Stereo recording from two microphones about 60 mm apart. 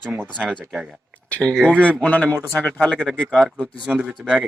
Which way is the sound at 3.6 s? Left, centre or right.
Right.